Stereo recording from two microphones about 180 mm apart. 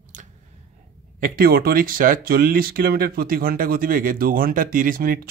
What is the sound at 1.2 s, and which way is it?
Speech, 55° right (ahead or behind).